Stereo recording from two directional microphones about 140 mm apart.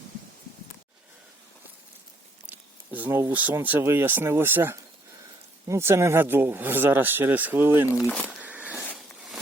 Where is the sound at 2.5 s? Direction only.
10° right (ahead or behind).